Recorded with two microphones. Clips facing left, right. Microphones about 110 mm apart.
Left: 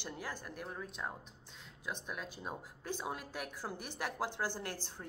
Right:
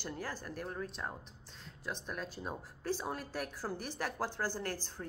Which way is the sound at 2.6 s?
40° right (ahead or behind).